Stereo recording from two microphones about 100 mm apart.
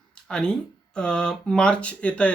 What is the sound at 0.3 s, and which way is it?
Speech, 10° left (ahead or behind).